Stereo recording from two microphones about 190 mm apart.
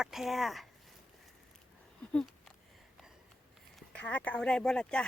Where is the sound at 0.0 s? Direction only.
Centre (ahead or behind).